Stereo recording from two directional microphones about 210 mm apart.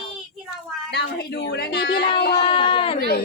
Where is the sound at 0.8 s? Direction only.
55° left (ahead or behind).